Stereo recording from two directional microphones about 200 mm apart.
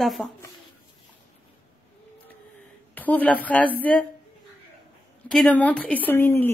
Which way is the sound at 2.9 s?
10° left (ahead or behind).